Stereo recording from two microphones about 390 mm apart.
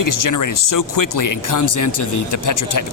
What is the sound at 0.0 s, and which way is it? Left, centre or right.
Speech, left.